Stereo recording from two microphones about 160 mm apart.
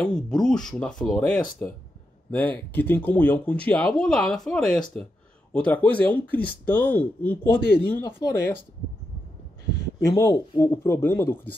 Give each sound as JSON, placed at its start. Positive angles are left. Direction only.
{"t": 0.0, "sound": "speech", "side_deg": 5}
{"t": 10.1, "sound": "speech", "side_deg": 20}